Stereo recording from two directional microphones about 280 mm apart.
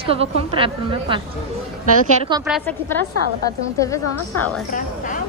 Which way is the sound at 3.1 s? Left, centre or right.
Right.